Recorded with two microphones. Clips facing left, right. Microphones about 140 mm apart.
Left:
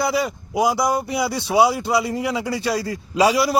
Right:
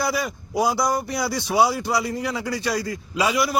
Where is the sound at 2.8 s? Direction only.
35° left (ahead or behind).